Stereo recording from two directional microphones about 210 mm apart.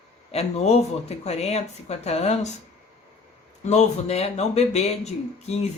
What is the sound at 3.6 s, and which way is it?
Speech, 30° left (ahead or behind).